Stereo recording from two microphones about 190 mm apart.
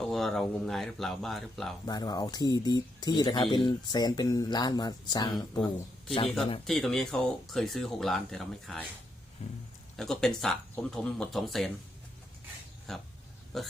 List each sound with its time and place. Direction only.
0.0 s speech: centre (ahead or behind)
1.9 s speech: 20° left (ahead or behind)
6.2 s speech: centre (ahead or behind)
9.4 s speech: 35° left (ahead or behind)
10.0 s speech: centre (ahead or behind)
12.9 s speech: centre (ahead or behind)